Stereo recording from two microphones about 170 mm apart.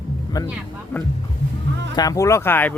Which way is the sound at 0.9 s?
10° left (ahead or behind).